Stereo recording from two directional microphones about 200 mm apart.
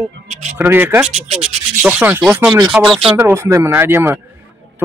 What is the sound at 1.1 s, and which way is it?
Rub, 30° right (ahead or behind).